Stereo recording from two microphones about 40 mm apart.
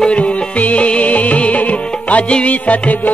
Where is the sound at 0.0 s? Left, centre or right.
Left.